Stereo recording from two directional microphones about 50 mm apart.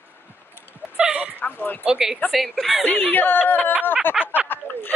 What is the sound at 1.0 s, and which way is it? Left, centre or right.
Bow-wow, centre.